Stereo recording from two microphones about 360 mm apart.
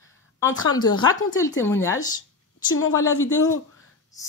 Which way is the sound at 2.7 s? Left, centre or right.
Left.